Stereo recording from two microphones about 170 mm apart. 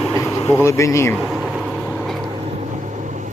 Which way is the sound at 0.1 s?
15° left (ahead or behind).